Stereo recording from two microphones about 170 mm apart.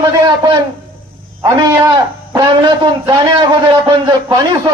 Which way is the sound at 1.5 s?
20° right (ahead or behind).